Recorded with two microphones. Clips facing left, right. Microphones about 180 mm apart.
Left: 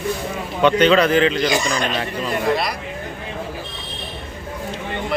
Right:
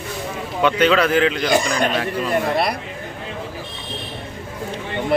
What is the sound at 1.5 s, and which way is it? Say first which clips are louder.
Speech: right 3 dB; 55° right (ahead or behind).